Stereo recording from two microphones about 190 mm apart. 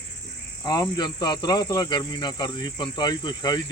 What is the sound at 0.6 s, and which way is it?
Speech, 20° left (ahead or behind).